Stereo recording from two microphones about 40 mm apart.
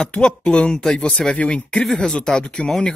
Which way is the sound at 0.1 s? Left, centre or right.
Left.